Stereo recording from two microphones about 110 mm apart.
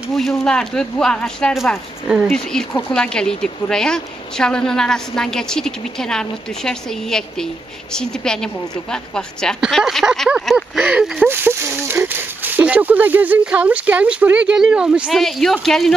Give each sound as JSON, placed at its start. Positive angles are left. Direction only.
{"t": 0.1, "sound": "speech", "side_deg": 5}
{"t": 2.3, "sound": "speech", "side_deg": 5}
{"t": 11.2, "sound": "speech", "side_deg": -20}